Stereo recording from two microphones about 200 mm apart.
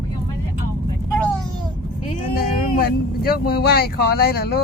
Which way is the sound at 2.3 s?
50° left (ahead or behind).